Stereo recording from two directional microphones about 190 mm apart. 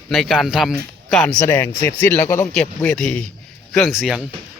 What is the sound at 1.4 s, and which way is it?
Speech, 15° left (ahead or behind).